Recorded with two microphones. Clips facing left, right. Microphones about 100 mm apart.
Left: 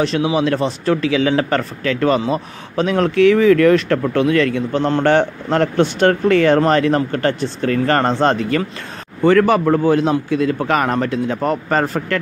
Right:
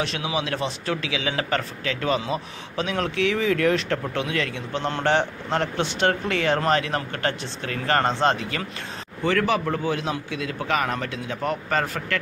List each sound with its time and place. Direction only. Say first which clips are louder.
0.0 s speech: left 10 dB; 35° left (ahead or behind)